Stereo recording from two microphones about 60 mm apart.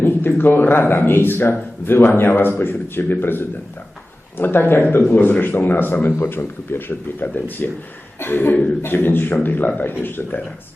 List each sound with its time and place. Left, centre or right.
0.0 s speech: left